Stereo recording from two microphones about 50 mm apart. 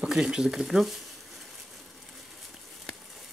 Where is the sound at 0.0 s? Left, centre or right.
Centre.